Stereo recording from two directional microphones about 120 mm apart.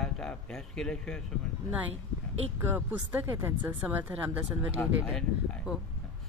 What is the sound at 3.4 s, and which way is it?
Speech, 20° right (ahead or behind).